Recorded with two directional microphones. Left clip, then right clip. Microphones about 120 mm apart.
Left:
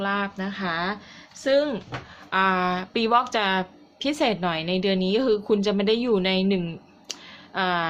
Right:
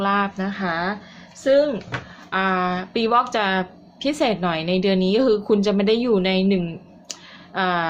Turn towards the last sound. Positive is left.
turn(degrees=5)  # may be behind; listen again after turning